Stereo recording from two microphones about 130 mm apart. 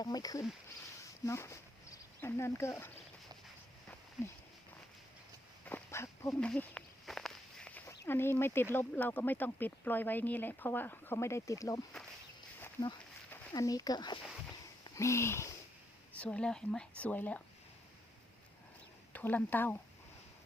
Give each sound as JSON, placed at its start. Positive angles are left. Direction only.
{"t": 0.0, "sound": "speech", "side_deg": 30}
{"t": 5.6, "sound": "a sound", "side_deg": 15}
{"t": 6.4, "sound": "walk", "side_deg": 10}
{"t": 7.9, "sound": "speech", "side_deg": 15}
{"t": 13.5, "sound": "speech", "side_deg": 30}
{"t": 14.8, "sound": "a sound", "side_deg": 25}
{"t": 16.1, "sound": "speech", "side_deg": 10}
{"t": 19.1, "sound": "speech", "side_deg": 15}